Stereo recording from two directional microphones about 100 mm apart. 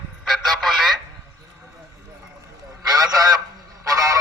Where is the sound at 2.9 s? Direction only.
40° right (ahead or behind).